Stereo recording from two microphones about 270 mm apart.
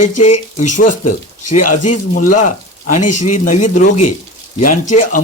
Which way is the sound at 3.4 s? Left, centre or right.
Left.